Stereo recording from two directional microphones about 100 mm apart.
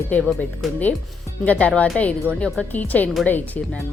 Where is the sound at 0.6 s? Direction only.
Centre (ahead or behind).